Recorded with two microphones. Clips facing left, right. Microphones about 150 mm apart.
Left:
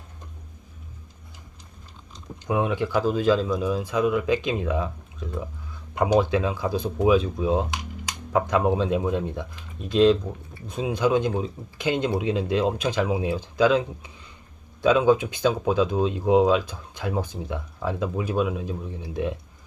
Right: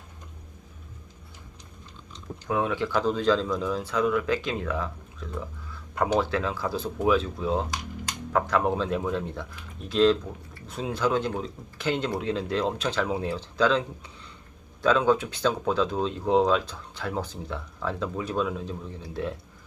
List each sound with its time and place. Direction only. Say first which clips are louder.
2.5 s speech: left 2 dB; 15° left (ahead or behind)